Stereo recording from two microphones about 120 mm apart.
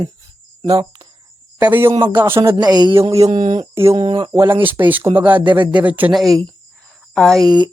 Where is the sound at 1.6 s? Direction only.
15° right (ahead or behind).